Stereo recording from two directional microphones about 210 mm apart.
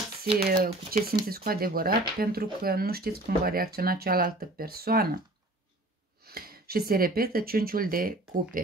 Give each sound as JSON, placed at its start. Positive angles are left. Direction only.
{"t": 0.2, "sound": "speech", "side_deg": -45}
{"t": 6.2, "sound": "speech", "side_deg": -45}